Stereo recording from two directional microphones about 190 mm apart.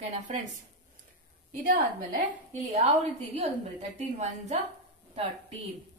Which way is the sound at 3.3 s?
35° right (ahead or behind).